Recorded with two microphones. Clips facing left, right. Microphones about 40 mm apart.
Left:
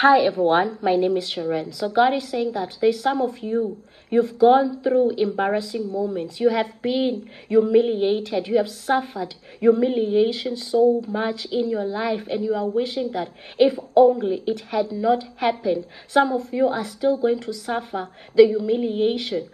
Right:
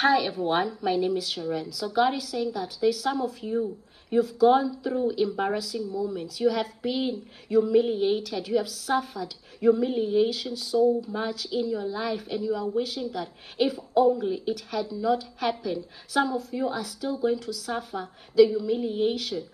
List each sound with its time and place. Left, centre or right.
0.0 s a woman's voice: left
0.3 s a woman's voice: left
4.2 s a woman's voice: left
6.0 s a woman's voice: left